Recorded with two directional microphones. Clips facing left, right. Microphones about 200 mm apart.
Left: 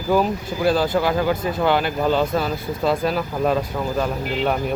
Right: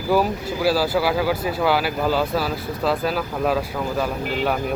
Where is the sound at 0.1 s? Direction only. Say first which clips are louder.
Even; 5° right (ahead or behind).